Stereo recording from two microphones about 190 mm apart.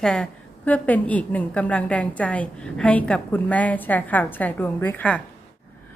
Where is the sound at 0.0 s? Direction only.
5° left (ahead or behind).